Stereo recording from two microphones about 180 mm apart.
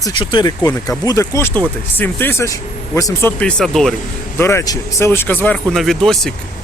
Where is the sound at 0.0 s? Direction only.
25° left (ahead or behind); by 3.9 s centre (ahead or behind).